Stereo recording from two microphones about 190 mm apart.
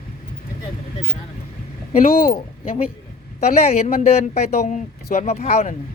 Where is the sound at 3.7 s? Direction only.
35° left (ahead or behind).